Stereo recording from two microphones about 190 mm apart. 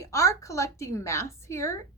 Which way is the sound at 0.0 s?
15° left (ahead or behind).